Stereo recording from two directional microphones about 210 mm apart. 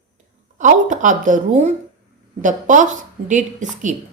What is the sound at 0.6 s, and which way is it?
A woman's voice, 35° right (ahead or behind).